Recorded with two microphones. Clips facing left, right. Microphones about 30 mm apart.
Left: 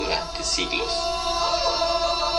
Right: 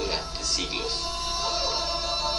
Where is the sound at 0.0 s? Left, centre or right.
Left.